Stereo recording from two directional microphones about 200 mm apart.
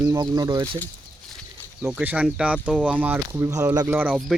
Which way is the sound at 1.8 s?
5° right (ahead or behind).